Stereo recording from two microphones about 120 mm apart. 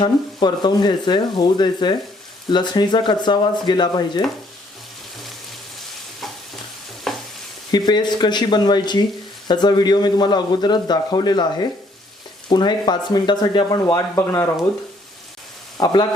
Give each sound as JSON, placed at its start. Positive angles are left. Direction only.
{"t": 0.0, "sound": "a man's voice", "side_deg": 40}
{"t": 7.1, "sound": "stir", "side_deg": 5}
{"t": 7.7, "sound": "a man's voice", "side_deg": 35}
{"t": 15.8, "sound": "a man's voice", "side_deg": 40}